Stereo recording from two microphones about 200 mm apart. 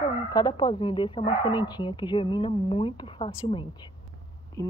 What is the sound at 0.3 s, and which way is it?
Speech, 20° left (ahead or behind).